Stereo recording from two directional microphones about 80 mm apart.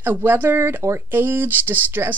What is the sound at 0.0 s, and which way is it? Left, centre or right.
Speech, right.